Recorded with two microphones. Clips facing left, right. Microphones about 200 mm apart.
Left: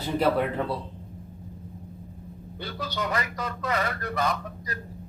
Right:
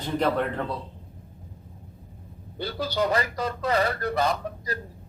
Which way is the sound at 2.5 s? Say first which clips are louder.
Right 6 dB; 35° right (ahead or behind).